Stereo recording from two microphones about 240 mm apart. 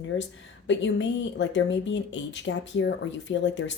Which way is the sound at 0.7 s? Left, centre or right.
Left.